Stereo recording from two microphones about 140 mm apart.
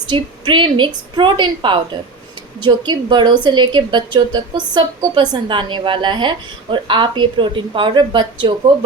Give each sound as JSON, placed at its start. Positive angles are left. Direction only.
{"t": 0.1, "sound": "a woman's voice", "side_deg": -35}